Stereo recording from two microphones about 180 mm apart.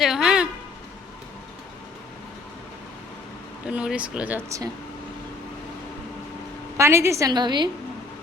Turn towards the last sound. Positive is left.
turn(degrees=-25)  # may be behind; listen again after turning